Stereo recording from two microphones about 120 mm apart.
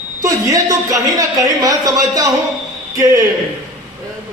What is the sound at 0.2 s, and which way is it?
A man's voice, 30° right (ahead or behind).